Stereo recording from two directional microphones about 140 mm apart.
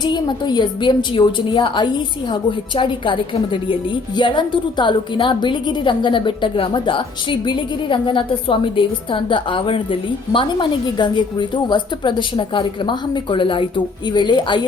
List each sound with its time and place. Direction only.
0.0 s a woman's voice: 30° left (ahead or behind)